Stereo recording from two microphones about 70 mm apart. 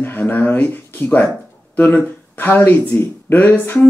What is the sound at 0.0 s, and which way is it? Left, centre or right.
Speech, left.